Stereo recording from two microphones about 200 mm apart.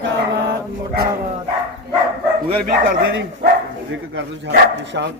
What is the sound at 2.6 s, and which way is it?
Speech, 50° right (ahead or behind).